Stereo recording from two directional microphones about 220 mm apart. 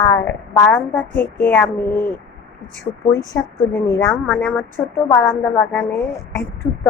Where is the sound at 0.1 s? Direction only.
5° left (ahead or behind).